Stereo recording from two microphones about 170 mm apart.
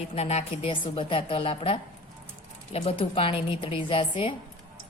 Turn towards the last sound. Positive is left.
turn(degrees=35)  # may be behind; listen again after turning